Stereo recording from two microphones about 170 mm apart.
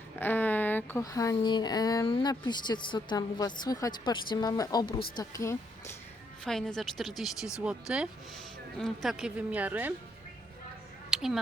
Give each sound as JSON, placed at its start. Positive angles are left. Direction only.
{"t": 0.2, "sound": "a woman's voice", "side_deg": 10}
{"t": 6.4, "sound": "a woman's voice", "side_deg": 5}
{"t": 11.1, "sound": "a sound", "side_deg": -5}